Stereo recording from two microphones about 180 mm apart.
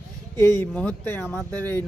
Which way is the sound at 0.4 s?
10° left (ahead or behind).